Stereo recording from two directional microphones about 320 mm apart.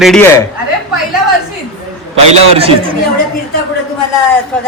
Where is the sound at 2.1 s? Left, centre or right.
Centre.